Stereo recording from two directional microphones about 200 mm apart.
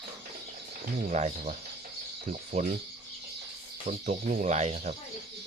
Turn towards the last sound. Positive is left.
turn(degrees=-35)  # may be behind; listen again after turning